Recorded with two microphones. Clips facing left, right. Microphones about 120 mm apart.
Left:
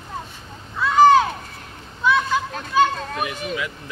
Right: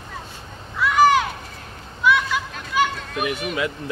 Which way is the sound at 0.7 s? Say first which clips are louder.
Left 3 dB; 25° left (ahead or behind).